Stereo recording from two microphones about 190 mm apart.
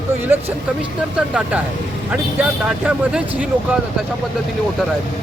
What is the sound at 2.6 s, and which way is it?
Speech, 5° right (ahead or behind).